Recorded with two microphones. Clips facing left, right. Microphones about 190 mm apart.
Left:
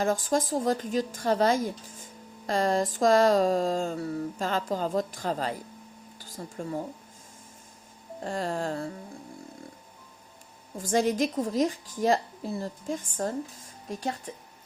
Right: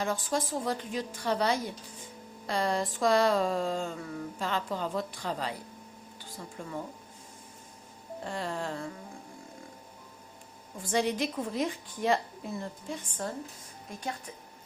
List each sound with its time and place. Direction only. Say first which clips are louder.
0.0 s a sound: left 5 dB; 45° left (ahead or behind)
6.1 s speech: left 5 dB; 40° left (ahead or behind)
8.2 s a woman's voice: left 5 dB; 40° left (ahead or behind)
10.8 s a woman's voice: left 4 dB; 45° left (ahead or behind)